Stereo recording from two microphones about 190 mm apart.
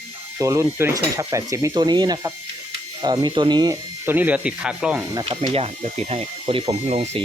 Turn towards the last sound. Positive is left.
turn(degrees=-30)  # may be behind; listen again after turning